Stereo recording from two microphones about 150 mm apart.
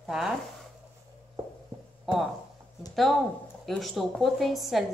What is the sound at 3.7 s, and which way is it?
Speech, centre (ahead or behind).